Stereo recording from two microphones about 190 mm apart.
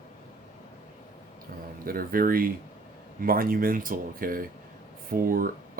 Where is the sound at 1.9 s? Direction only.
50° right (ahead or behind).